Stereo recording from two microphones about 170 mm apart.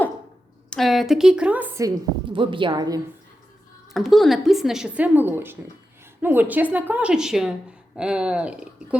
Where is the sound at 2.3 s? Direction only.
30° right (ahead or behind).